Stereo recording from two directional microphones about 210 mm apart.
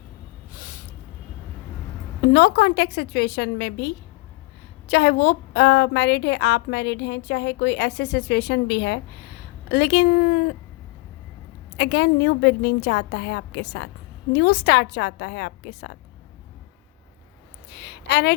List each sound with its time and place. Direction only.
0.5 s snort: 40° left (ahead or behind)
2.2 s a woman's voice: 50° left (ahead or behind)
11.8 s a woman's voice: 55° left (ahead or behind)
17.7 s a woman's voice: 55° left (ahead or behind)